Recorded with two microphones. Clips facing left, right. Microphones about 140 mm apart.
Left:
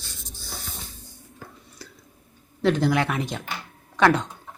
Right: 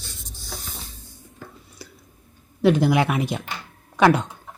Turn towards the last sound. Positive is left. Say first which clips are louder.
# right 2 dB
turn(degrees=-15)  # may be behind; listen again after turning